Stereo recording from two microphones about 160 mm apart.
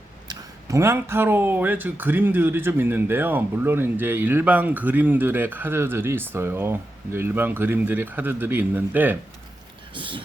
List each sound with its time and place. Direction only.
0.3 s speech: 20° right (ahead or behind)
9.9 s speech: 30° right (ahead or behind)